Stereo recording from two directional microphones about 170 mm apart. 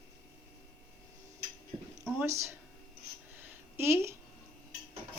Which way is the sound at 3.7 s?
15° right (ahead or behind).